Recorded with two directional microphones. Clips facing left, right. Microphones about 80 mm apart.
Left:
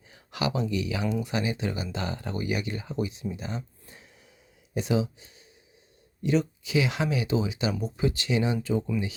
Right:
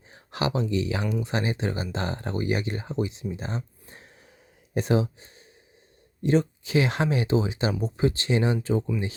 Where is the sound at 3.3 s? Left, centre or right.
Right.